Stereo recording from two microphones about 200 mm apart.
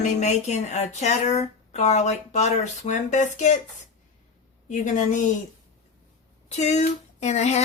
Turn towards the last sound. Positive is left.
turn(degrees=35)  # may be behind; listen again after turning